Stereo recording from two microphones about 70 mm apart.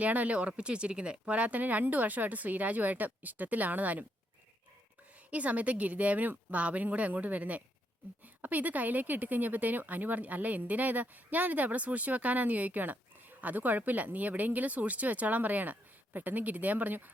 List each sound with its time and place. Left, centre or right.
0.0 s speech: right
5.3 s speech: right